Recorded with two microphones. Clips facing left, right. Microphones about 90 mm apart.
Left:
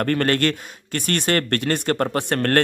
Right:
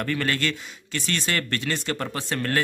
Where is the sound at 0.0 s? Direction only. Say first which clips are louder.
Left 6 dB; 55° left (ahead or behind).